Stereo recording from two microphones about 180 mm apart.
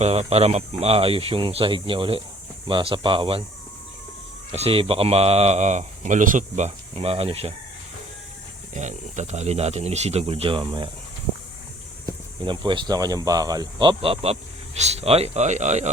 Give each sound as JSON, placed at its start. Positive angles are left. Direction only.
{"t": 0.0, "sound": "speech", "side_deg": -35}
{"t": 4.5, "sound": "speech", "side_deg": -35}
{"t": 8.7, "sound": "speech", "side_deg": -40}
{"t": 12.0, "sound": "speech", "side_deg": -25}